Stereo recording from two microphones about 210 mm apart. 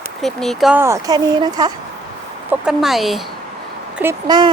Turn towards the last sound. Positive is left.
turn(degrees=-20)  # may be behind; listen again after turning